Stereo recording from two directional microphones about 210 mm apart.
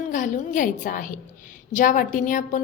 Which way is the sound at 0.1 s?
40° left (ahead or behind).